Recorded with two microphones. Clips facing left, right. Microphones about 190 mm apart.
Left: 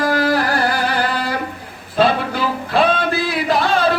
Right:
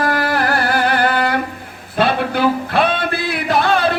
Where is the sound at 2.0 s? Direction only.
60° right (ahead or behind).